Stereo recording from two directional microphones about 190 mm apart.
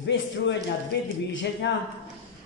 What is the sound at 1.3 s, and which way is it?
Speech, 70° left (ahead or behind).